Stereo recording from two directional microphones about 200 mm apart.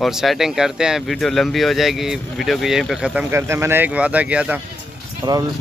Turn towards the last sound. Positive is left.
turn(degrees=-20)  # may be behind; listen again after turning